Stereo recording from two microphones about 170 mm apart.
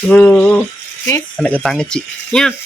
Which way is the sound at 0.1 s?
10° left (ahead or behind).